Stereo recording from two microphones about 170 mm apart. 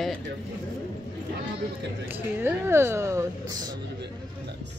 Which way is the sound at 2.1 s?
10° right (ahead or behind).